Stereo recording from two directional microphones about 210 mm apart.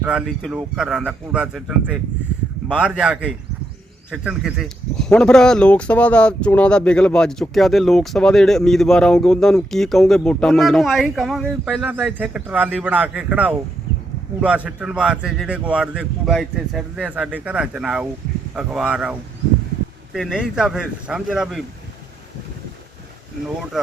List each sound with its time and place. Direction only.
0.0 s speech: 5° right (ahead or behind)
20.1 s speech: 5° right (ahead or behind)